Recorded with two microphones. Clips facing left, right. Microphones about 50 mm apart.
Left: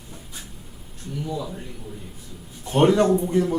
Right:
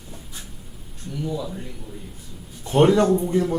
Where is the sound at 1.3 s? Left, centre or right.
Centre.